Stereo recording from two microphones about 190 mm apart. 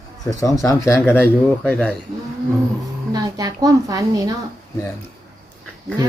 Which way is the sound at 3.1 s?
20° right (ahead or behind).